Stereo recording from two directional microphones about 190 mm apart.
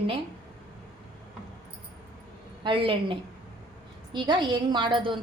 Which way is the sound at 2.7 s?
25° right (ahead or behind).